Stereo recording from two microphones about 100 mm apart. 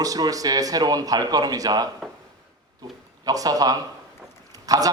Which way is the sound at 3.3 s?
35° right (ahead or behind).